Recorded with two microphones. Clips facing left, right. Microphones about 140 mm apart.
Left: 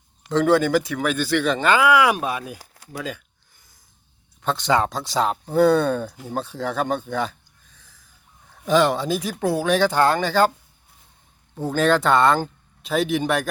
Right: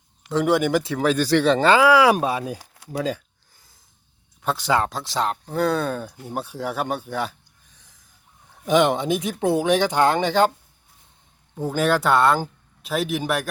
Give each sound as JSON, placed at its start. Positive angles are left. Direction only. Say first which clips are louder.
{"t": 0.3, "sound": "speech", "louder": "left 2 dB", "side_deg": -10}
{"t": 3.0, "sound": "a sound", "louder": "right 6 dB", "side_deg": -35}
{"t": 4.4, "sound": "speech", "louder": "left 1 dB", "side_deg": -5}
{"t": 11.6, "sound": "speech", "louder": "left 1 dB", "side_deg": -10}